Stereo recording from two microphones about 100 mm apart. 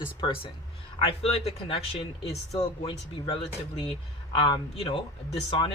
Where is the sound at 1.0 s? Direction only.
70° left (ahead or behind).